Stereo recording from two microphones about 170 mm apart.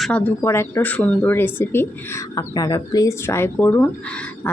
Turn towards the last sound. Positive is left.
turn(degrees=10)  # may be behind; listen again after turning